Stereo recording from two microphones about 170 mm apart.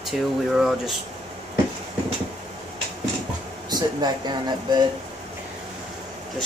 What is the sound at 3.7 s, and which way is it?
Speech, 25° right (ahead or behind).